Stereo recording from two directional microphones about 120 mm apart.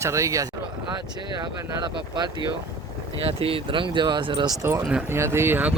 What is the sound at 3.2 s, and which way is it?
Speech, 55° right (ahead or behind).